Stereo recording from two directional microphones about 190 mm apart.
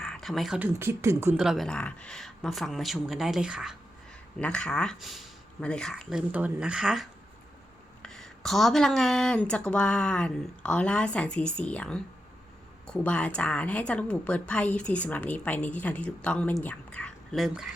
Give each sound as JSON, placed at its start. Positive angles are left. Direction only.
{"t": 0.0, "sound": "speech", "side_deg": 5}
{"t": 1.4, "sound": "a woman's voice", "side_deg": 0}